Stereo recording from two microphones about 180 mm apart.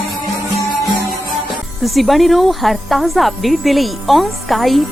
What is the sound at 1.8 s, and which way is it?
Speech, centre (ahead or behind).